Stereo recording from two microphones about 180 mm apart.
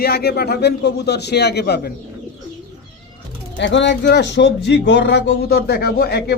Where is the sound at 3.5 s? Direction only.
80° left.